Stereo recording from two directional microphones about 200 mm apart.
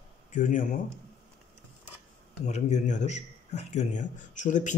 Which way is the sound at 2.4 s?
35° left (ahead or behind).